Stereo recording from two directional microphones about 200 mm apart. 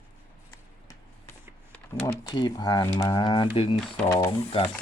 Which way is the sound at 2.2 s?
20° left (ahead or behind).